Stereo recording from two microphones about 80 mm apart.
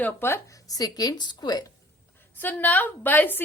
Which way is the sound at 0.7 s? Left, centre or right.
Left.